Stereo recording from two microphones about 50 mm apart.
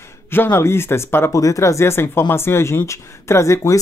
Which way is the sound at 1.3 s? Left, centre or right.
Left.